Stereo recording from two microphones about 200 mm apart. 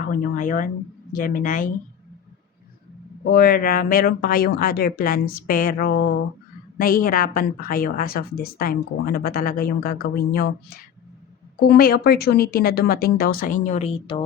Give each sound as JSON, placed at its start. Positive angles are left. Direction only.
{"t": 0.1, "sound": "a woman's voice", "side_deg": 40}
{"t": 3.3, "sound": "a woman's voice", "side_deg": 45}
{"t": 11.6, "sound": "a woman's voice", "side_deg": 50}